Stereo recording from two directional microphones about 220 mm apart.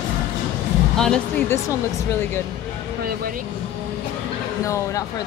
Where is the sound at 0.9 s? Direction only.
5° left (ahead or behind).